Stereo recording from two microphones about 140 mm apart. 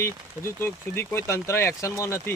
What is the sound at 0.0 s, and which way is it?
Speech, 15° left (ahead or behind).